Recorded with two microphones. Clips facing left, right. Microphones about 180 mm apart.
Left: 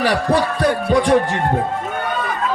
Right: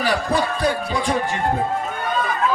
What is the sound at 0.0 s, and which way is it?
Speech, 75° left (ahead or behind).